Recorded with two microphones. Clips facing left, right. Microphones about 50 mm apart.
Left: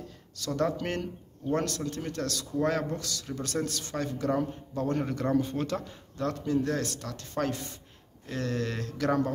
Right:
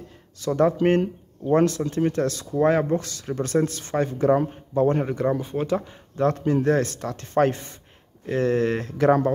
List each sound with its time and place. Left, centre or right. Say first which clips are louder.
0.4 s speech: right 9 dB; right
5.1 s speech: right 4 dB; centre
6.1 s speech: right 7 dB; right
8.3 s speech: right 10 dB; right